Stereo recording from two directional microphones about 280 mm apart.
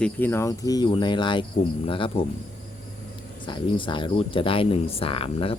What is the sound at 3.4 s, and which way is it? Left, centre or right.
Speech, centre.